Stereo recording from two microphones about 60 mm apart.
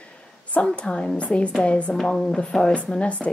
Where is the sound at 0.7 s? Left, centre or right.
Centre.